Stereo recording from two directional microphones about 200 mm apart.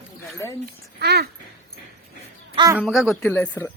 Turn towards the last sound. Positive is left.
turn(degrees=10)  # may be behind; listen again after turning